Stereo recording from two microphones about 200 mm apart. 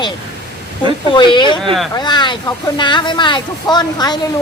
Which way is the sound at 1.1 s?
25° left (ahead or behind).